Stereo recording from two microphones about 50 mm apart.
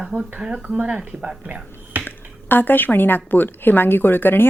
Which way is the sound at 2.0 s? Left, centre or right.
Left.